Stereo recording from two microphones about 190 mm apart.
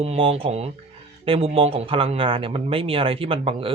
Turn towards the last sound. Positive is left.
turn(degrees=-30)  # may be behind; listen again after turning